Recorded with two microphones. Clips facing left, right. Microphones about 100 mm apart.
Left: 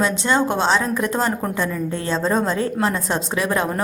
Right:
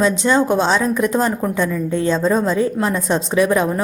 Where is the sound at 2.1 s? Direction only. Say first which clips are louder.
Right 3 dB; 20° left (ahead or behind).